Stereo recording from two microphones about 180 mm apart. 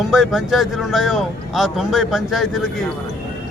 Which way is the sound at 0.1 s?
Centre (ahead or behind).